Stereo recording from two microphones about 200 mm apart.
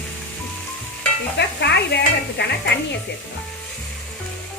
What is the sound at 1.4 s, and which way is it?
Speech, 55° left (ahead or behind).